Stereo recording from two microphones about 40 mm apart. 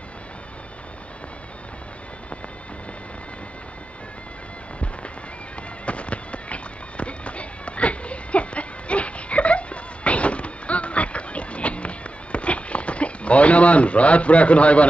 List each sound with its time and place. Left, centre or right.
5.6 s music: left